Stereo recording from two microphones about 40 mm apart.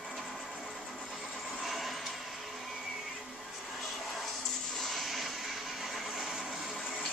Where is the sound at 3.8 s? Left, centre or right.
Centre.